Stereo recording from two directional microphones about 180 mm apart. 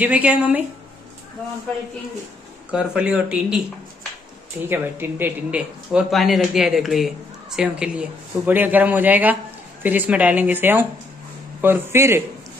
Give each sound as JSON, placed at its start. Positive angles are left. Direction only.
{"t": 0.0, "sound": "speech", "side_deg": -10}
{"t": 2.7, "sound": "speech", "side_deg": -5}
{"t": 4.6, "sound": "speech", "side_deg": -10}